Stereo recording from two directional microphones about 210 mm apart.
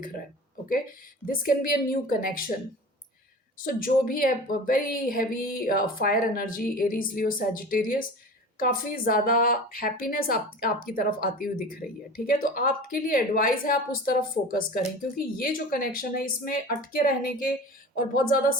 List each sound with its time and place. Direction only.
1.3 s speech: 40° left (ahead or behind)
3.6 s speech: 40° left (ahead or behind)